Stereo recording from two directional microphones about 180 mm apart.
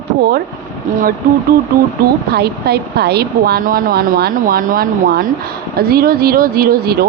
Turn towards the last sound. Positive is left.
turn(degrees=-55)  # may be behind; listen again after turning